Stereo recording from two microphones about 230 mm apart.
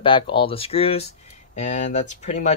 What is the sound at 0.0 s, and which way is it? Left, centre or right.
Speech, left.